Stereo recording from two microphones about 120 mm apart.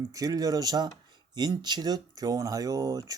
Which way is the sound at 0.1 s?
30° right (ahead or behind).